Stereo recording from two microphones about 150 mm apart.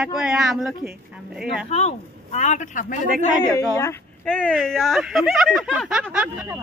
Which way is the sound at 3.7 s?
20° left (ahead or behind).